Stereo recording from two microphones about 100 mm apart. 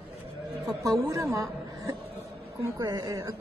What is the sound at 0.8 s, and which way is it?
A woman's voice, 30° right (ahead or behind).